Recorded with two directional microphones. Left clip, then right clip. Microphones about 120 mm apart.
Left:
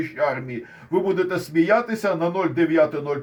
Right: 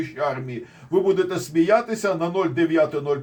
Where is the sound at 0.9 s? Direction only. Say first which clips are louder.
Right 1 dB; 30° left (ahead or behind).